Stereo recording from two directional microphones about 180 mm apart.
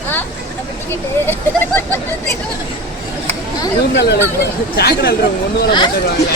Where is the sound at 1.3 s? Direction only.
10° left (ahead or behind).